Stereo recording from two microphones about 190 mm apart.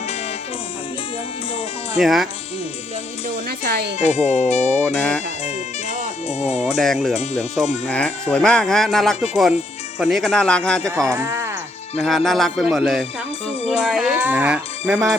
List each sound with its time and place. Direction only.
2.0 s speech: centre (ahead or behind)
3.2 s music: 55° right (ahead or behind)
3.9 s speech: 35° left (ahead or behind)
4.9 s speech: 5° left (ahead or behind)
6.2 s speech: 35° left (ahead or behind)
6.7 s speech: centre (ahead or behind)
10.8 s speech: 15° right (ahead or behind)
12.0 s speech: centre (ahead or behind)